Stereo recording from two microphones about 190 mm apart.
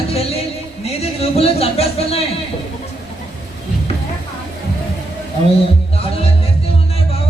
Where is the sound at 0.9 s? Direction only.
35° left (ahead or behind).